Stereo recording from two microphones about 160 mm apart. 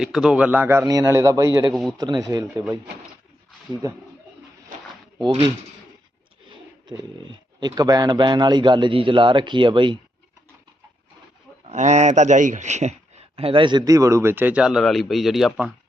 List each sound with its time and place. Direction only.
0.0 s speech: 5° right (ahead or behind); by 1.5 s 20° right (ahead or behind)
1.7 s a man's voice: centre (ahead or behind)
2.0 s speech: 25° right (ahead or behind)
3.8 s speech: 20° right (ahead or behind)
6.5 s speech: 30° right (ahead or behind)
11.7 s speech: 45° right (ahead or behind); by 15.7 s 5° right (ahead or behind)